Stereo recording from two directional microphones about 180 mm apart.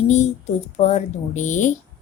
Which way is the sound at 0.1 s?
40° left (ahead or behind).